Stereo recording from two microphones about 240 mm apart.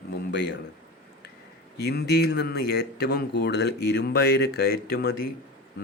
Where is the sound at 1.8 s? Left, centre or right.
Left.